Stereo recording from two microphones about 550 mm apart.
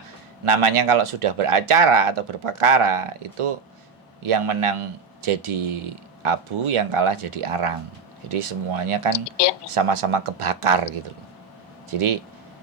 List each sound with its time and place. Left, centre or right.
0.4 s a man's voice: right
11.9 s a man's voice: right